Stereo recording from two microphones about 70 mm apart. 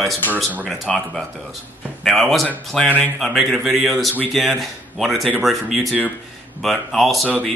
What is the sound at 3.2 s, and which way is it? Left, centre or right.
Speech, centre.